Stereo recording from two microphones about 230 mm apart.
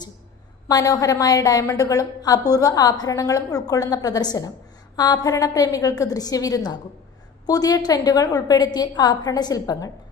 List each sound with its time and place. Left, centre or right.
0.7 s a woman's voice: centre